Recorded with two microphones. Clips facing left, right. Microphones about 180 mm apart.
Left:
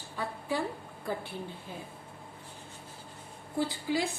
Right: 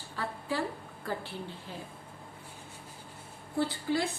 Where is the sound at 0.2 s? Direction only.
15° left (ahead or behind).